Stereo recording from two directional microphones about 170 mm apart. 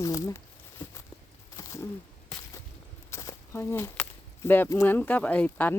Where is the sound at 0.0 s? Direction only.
20° left (ahead or behind).